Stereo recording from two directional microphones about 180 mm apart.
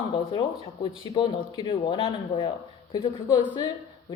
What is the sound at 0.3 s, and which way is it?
Speech, 30° left (ahead or behind).